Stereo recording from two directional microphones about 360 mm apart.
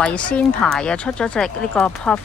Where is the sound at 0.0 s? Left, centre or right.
Centre.